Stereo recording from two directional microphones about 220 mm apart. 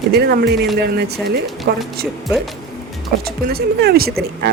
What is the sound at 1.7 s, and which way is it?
Speech, 50° right (ahead or behind).